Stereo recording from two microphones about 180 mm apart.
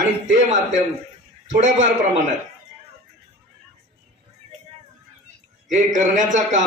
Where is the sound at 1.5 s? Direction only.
45° right (ahead or behind).